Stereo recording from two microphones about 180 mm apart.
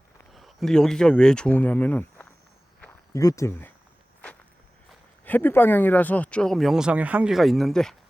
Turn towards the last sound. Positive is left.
turn(degrees=0)  # may be behind; listen again after turning